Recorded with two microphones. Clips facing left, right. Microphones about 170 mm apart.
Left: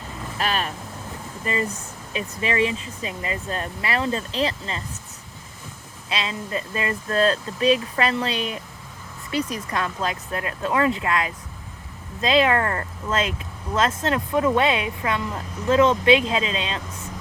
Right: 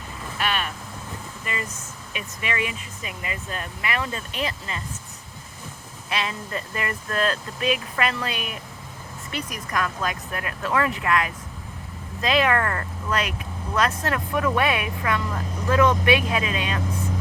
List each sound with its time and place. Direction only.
0.3 s vehicle: 35° left (ahead or behind)
1.5 s speech: 35° left (ahead or behind)
6.1 s speech: 20° left (ahead or behind)